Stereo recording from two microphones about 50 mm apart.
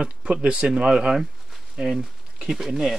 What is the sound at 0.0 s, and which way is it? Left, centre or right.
Speech, right.